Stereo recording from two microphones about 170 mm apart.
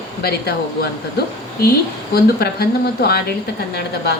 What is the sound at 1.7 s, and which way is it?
Speech, 65° left (ahead or behind).